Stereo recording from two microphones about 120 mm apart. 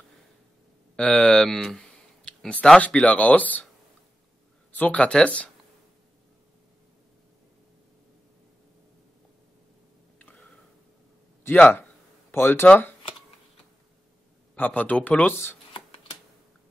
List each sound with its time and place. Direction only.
0.9 s speech: 5° left (ahead or behind)
4.7 s speech: 10° left (ahead or behind)
10.1 s a sound: 15° left (ahead or behind)
11.4 s speech: 15° left (ahead or behind)
14.5 s speech: 15° left (ahead or behind)